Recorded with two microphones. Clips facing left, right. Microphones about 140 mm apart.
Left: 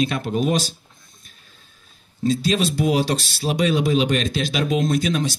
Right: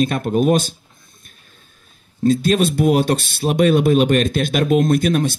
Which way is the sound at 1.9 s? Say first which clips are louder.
Right 5 dB; 50° right (ahead or behind).